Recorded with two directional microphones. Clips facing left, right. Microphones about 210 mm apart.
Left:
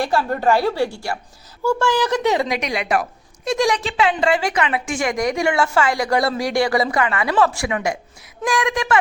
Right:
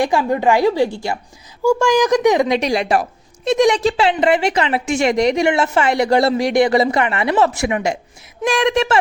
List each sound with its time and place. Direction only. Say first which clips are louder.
0.0 s a woman's voice: right 3 dB; 15° right (ahead or behind)
2.6 s a woman's voice: right 4 dB; 30° right (ahead or behind)